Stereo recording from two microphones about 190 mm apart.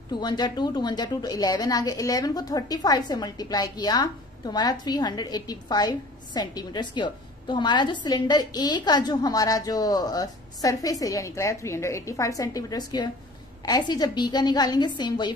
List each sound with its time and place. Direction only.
0.1 s a woman's voice: 20° left (ahead or behind)